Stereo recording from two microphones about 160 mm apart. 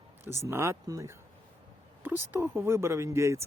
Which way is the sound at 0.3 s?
15° right (ahead or behind).